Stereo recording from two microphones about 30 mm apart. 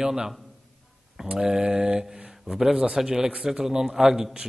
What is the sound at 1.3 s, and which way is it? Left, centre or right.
Speech, centre.